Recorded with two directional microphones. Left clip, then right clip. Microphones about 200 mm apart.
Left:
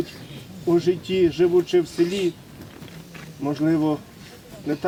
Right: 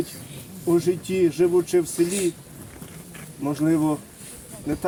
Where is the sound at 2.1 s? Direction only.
50° right (ahead or behind).